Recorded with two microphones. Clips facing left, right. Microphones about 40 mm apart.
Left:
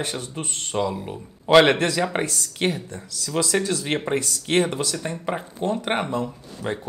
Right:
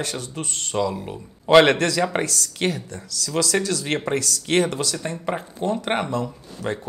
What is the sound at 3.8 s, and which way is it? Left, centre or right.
Speech, centre.